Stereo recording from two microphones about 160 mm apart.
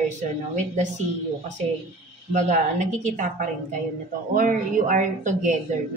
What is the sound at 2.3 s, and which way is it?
Speech, 50° right (ahead or behind).